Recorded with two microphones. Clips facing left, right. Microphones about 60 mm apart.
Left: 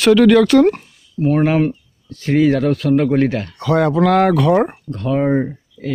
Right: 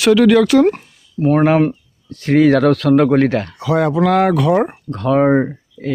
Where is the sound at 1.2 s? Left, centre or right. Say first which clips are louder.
Right 2 dB; right.